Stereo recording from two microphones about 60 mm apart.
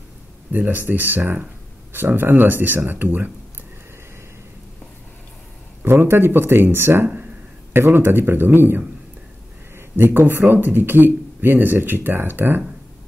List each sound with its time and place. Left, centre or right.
0.5 s speech: right
5.8 s speech: right